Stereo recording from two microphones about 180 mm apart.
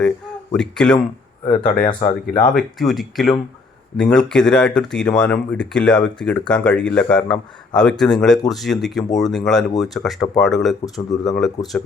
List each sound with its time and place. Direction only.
0.0 s speech: 5° left (ahead or behind)
1.5 s speech: 45° left (ahead or behind)
2.6 s speech: centre (ahead or behind)